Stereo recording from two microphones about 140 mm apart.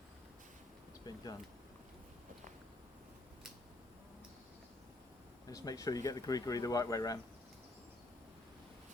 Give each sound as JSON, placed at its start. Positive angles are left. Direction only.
{"t": 1.0, "sound": "speech", "side_deg": 30}
{"t": 5.5, "sound": "speech", "side_deg": 25}